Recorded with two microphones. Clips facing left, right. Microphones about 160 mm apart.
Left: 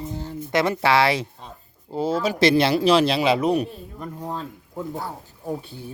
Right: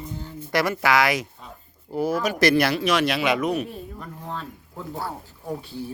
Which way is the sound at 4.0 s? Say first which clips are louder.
Left 8 dB; 20° left (ahead or behind).